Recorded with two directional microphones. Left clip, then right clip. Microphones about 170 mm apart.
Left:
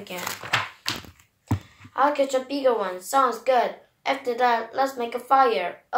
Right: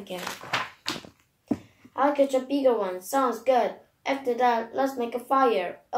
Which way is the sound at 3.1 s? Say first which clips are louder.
Left 3 dB; 35° left (ahead or behind).